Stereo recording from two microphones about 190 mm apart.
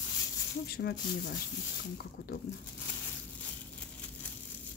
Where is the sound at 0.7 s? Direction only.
55° left (ahead or behind).